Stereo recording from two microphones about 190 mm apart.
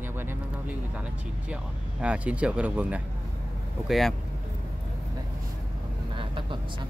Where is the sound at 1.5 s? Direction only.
5° right (ahead or behind).